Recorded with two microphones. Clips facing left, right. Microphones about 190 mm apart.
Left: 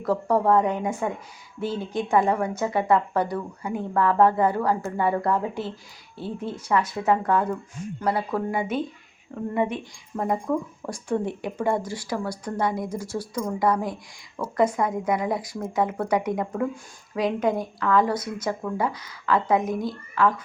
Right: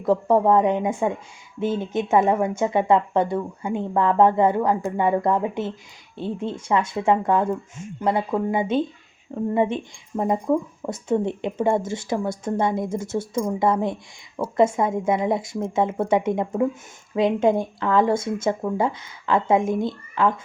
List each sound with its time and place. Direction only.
0.0 s speech: 20° right (ahead or behind)